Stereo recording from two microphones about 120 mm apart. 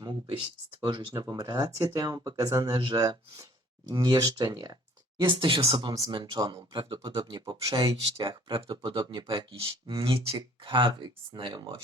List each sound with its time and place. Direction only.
0.0 s a sound: 45° right (ahead or behind)
0.9 s speech: 40° right (ahead or behind)
1.1 s speech: 30° right (ahead or behind)
2.7 s speech: 45° right (ahead or behind)
3.0 s speech: 30° right (ahead or behind); by 11.8 s 45° right (ahead or behind)